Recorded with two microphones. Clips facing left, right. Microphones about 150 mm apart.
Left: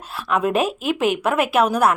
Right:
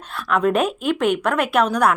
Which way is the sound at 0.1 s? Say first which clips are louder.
Right 1 dB; 5° left (ahead or behind).